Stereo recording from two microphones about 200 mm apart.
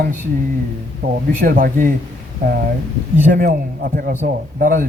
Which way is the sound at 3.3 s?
45° right (ahead or behind).